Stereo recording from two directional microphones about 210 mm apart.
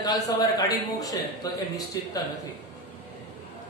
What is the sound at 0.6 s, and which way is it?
Speech, 15° left (ahead or behind).